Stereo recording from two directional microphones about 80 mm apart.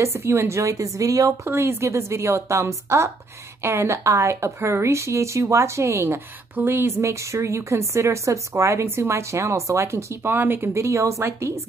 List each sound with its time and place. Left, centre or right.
0.0 s a woman's voice: right
1.4 s a woman's voice: right
10.8 s a woman's voice: right